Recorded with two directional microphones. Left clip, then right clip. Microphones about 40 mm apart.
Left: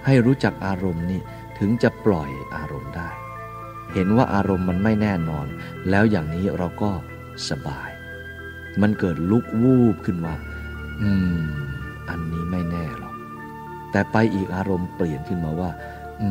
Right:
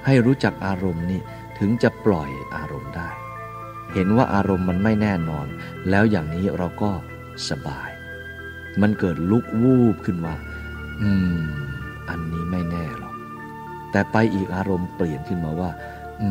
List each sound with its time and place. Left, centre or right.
0.0 s speech: centre
0.9 s speech: right
1.6 s speech: centre
3.9 s speech: right
4.6 s speech: centre; by 6.2 s right
6.2 s speech: right
7.4 s speech: centre
8.9 s speech: right
9.7 s speech: right
11.0 s speech: centre
12.1 s organ: right
13.9 s speech: right
15.2 s speech: centre